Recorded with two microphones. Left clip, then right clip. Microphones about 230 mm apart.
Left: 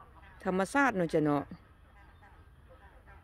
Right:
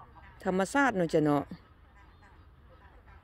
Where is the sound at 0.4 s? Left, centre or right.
Centre.